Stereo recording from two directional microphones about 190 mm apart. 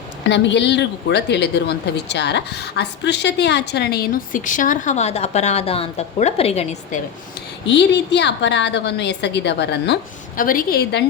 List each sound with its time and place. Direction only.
0.3 s a woman's voice: 65° left (ahead or behind); by 7.0 s 35° left (ahead or behind)
7.7 s a woman's voice: 65° left (ahead or behind)